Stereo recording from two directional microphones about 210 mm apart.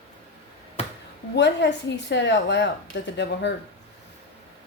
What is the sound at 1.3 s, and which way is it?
A woman's voice, 55° left (ahead or behind).